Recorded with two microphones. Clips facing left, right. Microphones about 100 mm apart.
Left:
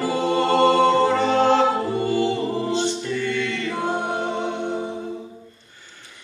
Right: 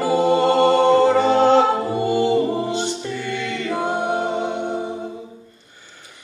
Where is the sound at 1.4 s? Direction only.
15° right (ahead or behind).